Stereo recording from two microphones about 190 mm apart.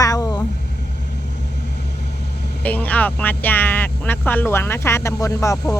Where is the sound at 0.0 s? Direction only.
20° left (ahead or behind).